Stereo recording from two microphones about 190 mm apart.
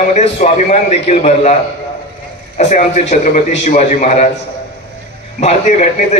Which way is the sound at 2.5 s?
40° left (ahead or behind).